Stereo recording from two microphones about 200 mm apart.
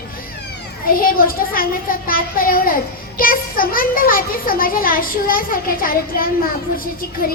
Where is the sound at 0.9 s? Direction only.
45° left (ahead or behind).